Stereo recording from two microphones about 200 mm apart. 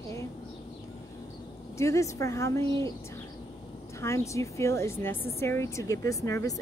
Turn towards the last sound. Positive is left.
turn(degrees=15)  # may be behind; listen again after turning